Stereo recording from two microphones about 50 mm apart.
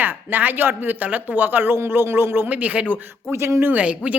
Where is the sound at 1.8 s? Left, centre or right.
Right.